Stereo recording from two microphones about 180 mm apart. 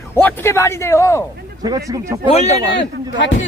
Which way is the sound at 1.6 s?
20° right (ahead or behind).